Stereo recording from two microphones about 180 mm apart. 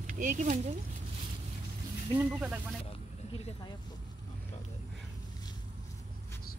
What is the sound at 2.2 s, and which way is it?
Speech, 10° right (ahead or behind).